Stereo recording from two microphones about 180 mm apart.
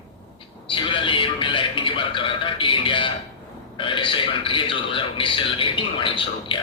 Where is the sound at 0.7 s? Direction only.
30° left (ahead or behind).